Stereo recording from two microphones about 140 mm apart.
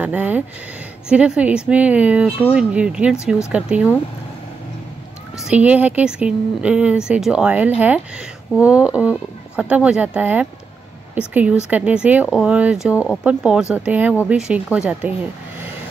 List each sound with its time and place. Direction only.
0.0 s speech: 10° right (ahead or behind)
5.5 s speech: 10° right (ahead or behind)
12.9 s speech: 15° left (ahead or behind)
13.2 s speech: 10° right (ahead or behind)